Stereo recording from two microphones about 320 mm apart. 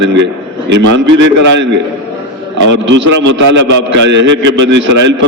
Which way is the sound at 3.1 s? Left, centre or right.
Right.